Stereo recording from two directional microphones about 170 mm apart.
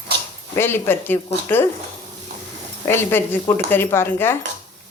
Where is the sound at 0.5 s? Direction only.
15° left (ahead or behind).